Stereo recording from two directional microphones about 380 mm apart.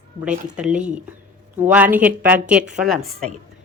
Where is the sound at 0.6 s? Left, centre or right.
Centre.